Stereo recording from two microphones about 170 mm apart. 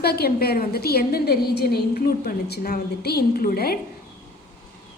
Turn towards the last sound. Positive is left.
turn(degrees=60)  # may be behind; listen again after turning